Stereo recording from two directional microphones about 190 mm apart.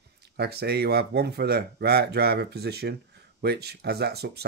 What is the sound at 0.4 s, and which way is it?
Speech, 55° right (ahead or behind).